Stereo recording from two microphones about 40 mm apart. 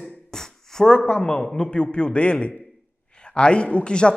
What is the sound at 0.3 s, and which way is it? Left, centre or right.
Speech, centre.